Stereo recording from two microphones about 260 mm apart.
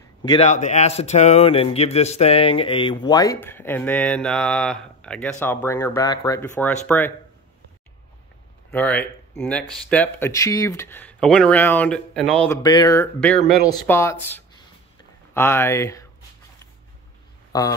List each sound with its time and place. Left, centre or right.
0.2 s speech: left
8.7 s speech: centre
12.6 s speech: centre
15.3 s speech: centre
17.5 s a sound: centre